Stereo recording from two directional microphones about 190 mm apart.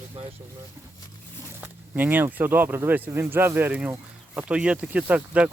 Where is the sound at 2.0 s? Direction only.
10° right (ahead or behind).